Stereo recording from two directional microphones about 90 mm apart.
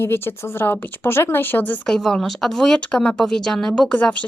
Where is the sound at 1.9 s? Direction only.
5° left (ahead or behind).